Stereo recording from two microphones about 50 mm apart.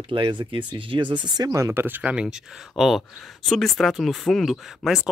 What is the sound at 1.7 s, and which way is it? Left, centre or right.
Speech, right.